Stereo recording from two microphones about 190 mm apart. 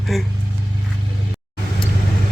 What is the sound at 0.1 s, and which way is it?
Speech, centre (ahead or behind).